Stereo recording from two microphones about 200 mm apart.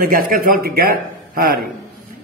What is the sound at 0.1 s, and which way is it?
Mantra, 45° right (ahead or behind).